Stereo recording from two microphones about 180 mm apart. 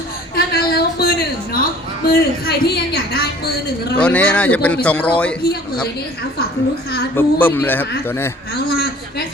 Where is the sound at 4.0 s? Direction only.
5° left (ahead or behind).